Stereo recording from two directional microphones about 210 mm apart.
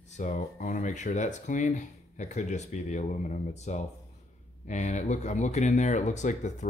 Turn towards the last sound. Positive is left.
turn(degrees=35)  # may be behind; listen again after turning